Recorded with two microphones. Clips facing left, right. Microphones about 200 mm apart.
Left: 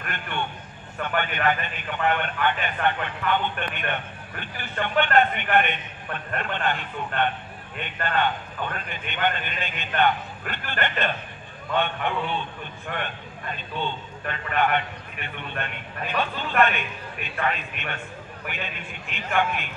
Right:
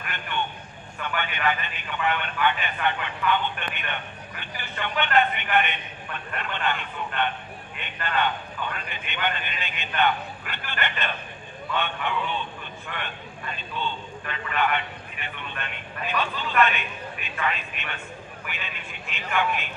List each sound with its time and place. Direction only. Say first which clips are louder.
0.0 s vehicle: left 1 dB; 45° left (ahead or behind)
0.9 s a man's voice: left 4 dB; 45° left (ahead or behind)